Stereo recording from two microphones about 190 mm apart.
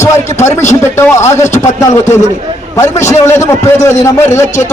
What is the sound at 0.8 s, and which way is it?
Speech, 15° left (ahead or behind).